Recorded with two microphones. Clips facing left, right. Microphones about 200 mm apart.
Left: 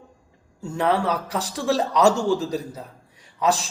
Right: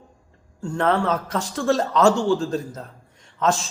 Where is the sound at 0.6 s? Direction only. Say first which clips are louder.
Right 1 dB; 5° left (ahead or behind).